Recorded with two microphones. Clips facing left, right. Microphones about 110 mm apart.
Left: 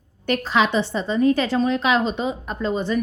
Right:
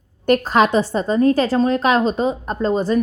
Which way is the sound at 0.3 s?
45° right (ahead or behind).